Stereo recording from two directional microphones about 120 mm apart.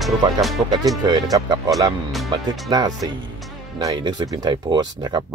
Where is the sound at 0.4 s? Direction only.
Centre (ahead or behind).